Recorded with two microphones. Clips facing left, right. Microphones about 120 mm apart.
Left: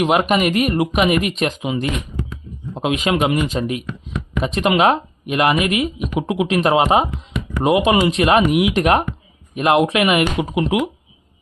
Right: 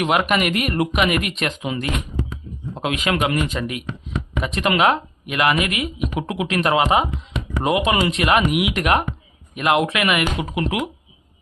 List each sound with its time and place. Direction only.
0.0 s speech: 25° left (ahead or behind)